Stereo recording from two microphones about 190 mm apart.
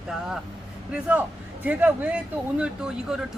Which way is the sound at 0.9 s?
5° right (ahead or behind).